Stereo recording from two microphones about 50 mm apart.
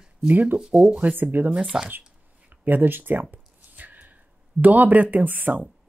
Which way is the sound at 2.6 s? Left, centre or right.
Right.